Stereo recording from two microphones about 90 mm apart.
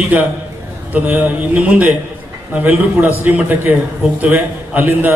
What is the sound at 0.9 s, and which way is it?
A man's voice, 15° right (ahead or behind).